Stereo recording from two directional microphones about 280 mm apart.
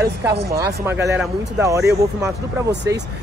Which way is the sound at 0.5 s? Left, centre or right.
Centre.